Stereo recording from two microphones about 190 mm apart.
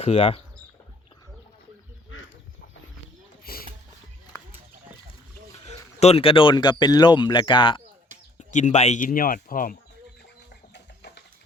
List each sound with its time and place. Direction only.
0.0 s speech: 30° left (ahead or behind)
3.4 s a sound: 50° left (ahead or behind)
5.6 s speech: 35° left (ahead or behind)
8.4 s speech: 40° left (ahead or behind)